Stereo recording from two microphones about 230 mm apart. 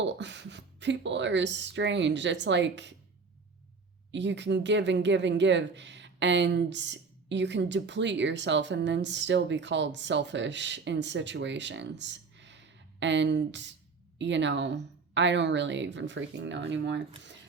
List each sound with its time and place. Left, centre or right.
0.0 s speech: right
4.1 s speech: right